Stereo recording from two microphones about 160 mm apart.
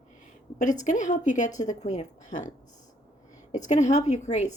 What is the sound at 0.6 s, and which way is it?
A woman's voice, 50° left (ahead or behind).